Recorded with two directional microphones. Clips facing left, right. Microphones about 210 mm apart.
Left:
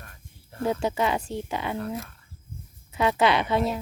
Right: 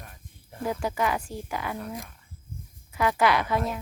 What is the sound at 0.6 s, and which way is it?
A woman's voice, 25° left (ahead or behind).